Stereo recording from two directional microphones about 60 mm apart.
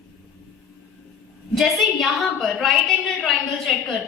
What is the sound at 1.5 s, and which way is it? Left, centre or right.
A woman's voice, centre.